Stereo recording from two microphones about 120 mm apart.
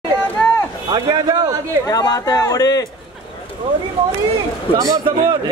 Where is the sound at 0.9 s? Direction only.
30° right (ahead or behind).